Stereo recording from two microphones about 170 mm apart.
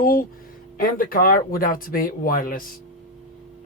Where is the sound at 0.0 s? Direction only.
55° left (ahead or behind).